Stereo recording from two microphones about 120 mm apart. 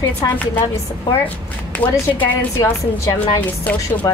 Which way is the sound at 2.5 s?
25° left (ahead or behind).